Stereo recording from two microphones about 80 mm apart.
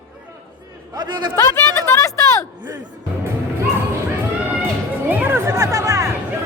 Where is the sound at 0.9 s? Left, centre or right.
Right.